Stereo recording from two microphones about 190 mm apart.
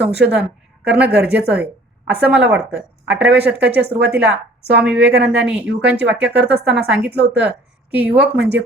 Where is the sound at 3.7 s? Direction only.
60° right (ahead or behind).